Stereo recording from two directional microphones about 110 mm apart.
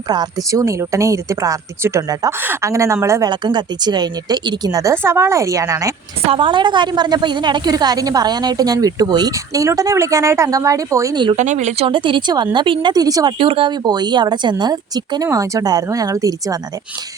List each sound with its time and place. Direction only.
0.1 s a woman's voice: 35° right (ahead or behind)
3.2 s a woman's voice: 40° right (ahead or behind)
6.2 s a woman's voice: 50° right (ahead or behind); by 11.2 s 30° right (ahead or behind)
11.3 s speech: 90° right
11.9 s speech: 50° right (ahead or behind)
12.9 s a woman's voice: 35° right (ahead or behind)
13.4 s a woman's voice: 50° right (ahead or behind); by 16.6 s 30° right (ahead or behind)